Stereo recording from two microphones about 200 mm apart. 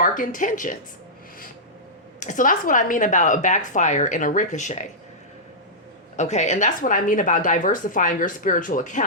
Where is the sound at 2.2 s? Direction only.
40° left (ahead or behind).